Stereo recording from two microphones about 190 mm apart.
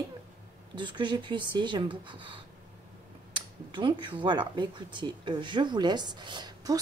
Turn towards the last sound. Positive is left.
turn(degrees=-20)  # may be behind; listen again after turning